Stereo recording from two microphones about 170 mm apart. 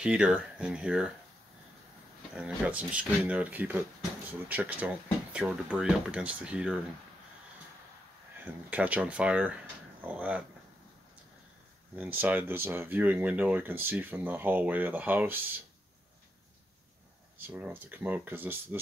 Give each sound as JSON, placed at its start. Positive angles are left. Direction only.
{"t": 0.0, "sound": "speech", "side_deg": -5}
{"t": 2.3, "sound": "speech", "side_deg": -5}
{"t": 8.5, "sound": "speech", "side_deg": -10}
{"t": 11.9, "sound": "speech", "side_deg": -10}
{"t": 17.4, "sound": "speech", "side_deg": -10}